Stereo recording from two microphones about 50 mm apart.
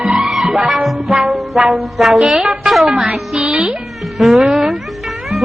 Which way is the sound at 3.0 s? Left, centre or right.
Centre.